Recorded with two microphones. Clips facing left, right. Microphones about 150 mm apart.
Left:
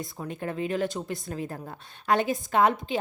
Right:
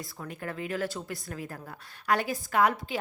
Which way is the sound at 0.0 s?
25° left (ahead or behind).